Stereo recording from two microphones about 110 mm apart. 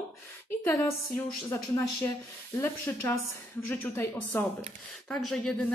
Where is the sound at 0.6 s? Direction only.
25° left (ahead or behind).